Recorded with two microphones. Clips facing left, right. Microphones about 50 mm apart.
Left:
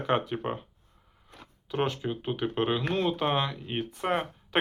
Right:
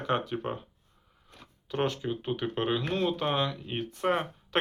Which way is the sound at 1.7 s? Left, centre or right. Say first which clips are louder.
Left 1 dB; centre.